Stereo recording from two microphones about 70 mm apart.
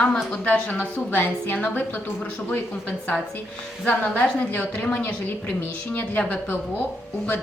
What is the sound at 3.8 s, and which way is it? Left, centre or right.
A woman's voice, centre.